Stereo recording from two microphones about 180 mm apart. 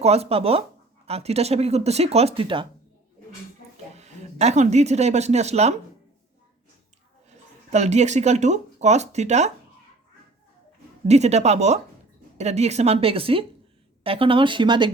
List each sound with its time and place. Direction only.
0.0 s speech: 35° right (ahead or behind)
3.9 s speech: 40° right (ahead or behind)
7.7 s speech: 40° right (ahead or behind)
11.1 s speech: 40° right (ahead or behind)